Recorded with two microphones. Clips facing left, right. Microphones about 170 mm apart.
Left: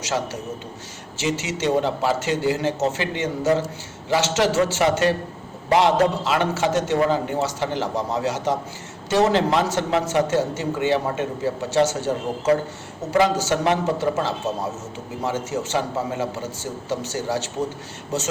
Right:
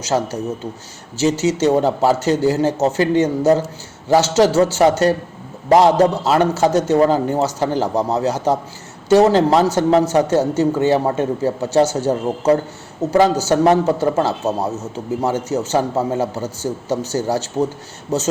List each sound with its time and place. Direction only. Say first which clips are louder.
0.0 s a man's voice: right 6 dB; 35° right (ahead or behind)